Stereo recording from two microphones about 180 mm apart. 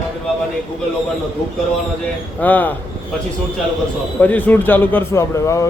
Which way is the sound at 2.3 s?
10° left (ahead or behind).